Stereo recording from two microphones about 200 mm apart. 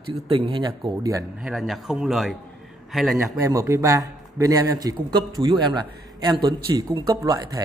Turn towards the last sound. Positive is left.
turn(degrees=-15)  # may be behind; listen again after turning